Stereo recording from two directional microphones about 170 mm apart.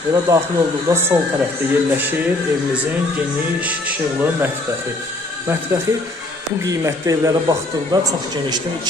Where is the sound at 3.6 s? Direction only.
10° right (ahead or behind).